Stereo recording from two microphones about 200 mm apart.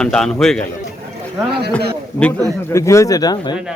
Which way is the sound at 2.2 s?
5° left (ahead or behind).